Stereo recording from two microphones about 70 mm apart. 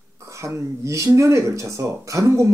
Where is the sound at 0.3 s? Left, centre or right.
Right.